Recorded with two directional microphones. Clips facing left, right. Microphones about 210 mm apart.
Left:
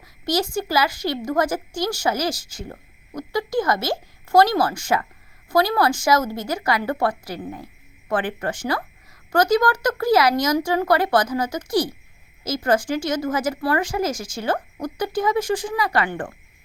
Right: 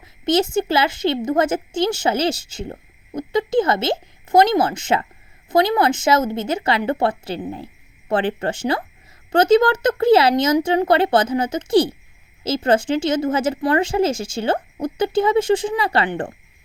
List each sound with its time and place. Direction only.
0.0 s a woman's voice: 25° right (ahead or behind)